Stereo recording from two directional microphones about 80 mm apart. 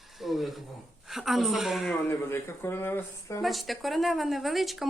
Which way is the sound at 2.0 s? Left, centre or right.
Left.